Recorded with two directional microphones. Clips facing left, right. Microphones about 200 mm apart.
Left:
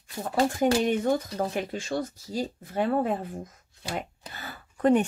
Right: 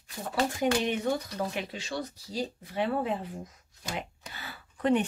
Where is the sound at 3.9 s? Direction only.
45° left (ahead or behind).